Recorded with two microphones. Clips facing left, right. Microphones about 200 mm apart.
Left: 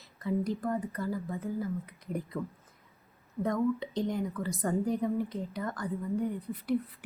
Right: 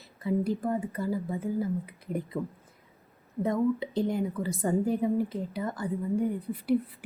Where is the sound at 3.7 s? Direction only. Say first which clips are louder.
Right 3 dB; 5° right (ahead or behind).